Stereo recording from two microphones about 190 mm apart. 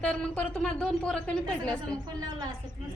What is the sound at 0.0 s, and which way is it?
Speech, 5° left (ahead or behind).